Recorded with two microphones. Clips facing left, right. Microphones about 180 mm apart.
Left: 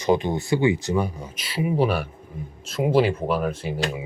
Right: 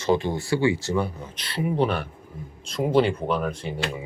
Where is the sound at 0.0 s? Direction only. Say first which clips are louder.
Left 2 dB; 15° left (ahead or behind).